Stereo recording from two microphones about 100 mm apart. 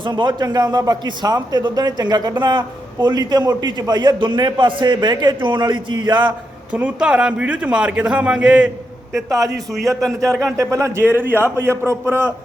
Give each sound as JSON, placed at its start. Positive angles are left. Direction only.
{"t": 0.0, "sound": "a man's voice", "side_deg": -50}
{"t": 6.7, "sound": "a man's voice", "side_deg": -15}
{"t": 10.2, "sound": "a man's voice", "side_deg": 5}
{"t": 10.6, "sound": "a man's voice", "side_deg": -35}
{"t": 11.1, "sound": "a man's voice", "side_deg": -20}